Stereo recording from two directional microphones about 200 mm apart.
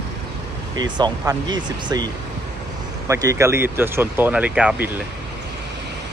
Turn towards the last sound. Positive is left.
turn(degrees=-5)  # may be behind; listen again after turning